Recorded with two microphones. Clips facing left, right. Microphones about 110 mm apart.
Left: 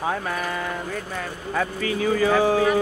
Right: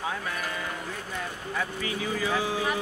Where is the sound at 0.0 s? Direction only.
50° left (ahead or behind).